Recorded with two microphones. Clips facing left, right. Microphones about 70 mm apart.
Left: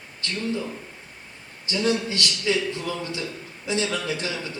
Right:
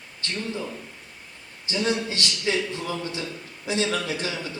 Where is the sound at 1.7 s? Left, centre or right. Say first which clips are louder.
Left 2 dB; right.